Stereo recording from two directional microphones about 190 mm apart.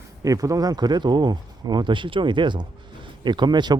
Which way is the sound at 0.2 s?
20° right (ahead or behind).